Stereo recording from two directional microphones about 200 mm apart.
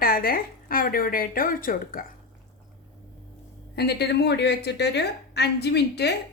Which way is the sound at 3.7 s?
55° left (ahead or behind).